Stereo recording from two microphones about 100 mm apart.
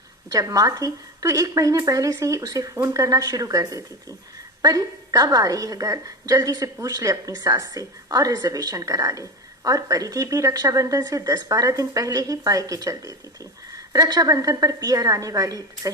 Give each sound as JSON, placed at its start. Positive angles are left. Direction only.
{"t": 0.3, "sound": "speech", "side_deg": -35}